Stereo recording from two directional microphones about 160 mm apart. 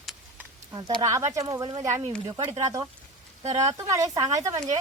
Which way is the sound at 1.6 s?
30° right (ahead or behind).